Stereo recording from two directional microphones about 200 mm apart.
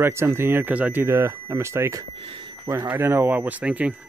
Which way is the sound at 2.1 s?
25° right (ahead or behind).